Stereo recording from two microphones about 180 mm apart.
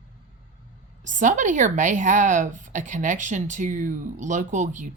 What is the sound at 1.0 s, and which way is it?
A woman's voice, 45° right (ahead or behind).